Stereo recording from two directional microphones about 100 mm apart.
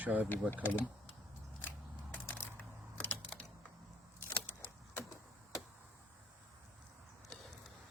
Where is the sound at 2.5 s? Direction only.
20° left (ahead or behind).